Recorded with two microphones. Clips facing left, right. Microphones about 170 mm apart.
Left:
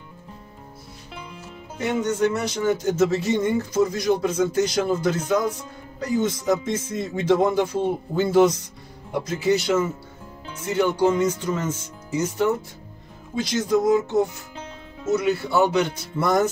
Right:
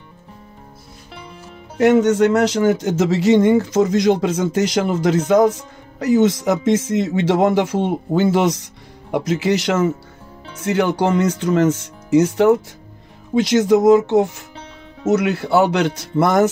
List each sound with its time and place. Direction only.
1.8 s speech: 80° right
13.3 s speech: 90° right
15.0 s speech: 70° right (ahead or behind)